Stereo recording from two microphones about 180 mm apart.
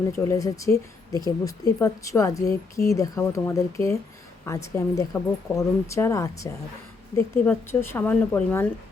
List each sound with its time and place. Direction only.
0.1 s speech: 20° left (ahead or behind)